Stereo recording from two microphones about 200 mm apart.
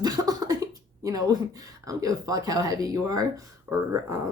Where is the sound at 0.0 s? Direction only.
20° right (ahead or behind).